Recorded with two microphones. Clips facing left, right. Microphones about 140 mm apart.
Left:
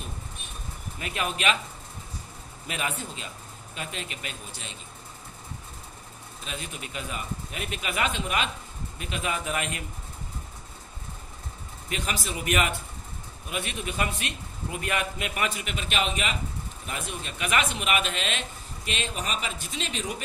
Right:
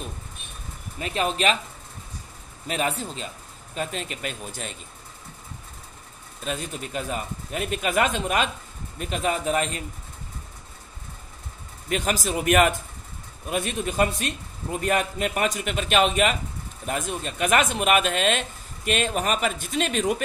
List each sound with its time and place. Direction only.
0.9 s a man's voice: 30° right (ahead or behind)
2.7 s a man's voice: 35° right (ahead or behind)
6.4 s a man's voice: 40° right (ahead or behind)
11.9 s a man's voice: 45° right (ahead or behind)